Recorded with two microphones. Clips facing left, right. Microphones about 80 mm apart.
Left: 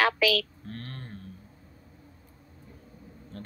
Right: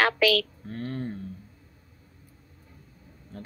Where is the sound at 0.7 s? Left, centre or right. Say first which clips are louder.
Right 8 dB; centre.